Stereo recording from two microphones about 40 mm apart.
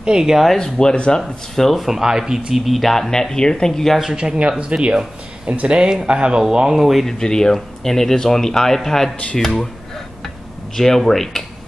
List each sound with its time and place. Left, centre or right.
0.0 s speech: right
0.6 s speech: centre
1.2 s speech: centre
3.1 s speech: centre
4.0 s speech: centre
6.4 s speech: centre
7.1 s speech: centre
10.8 s speech: centre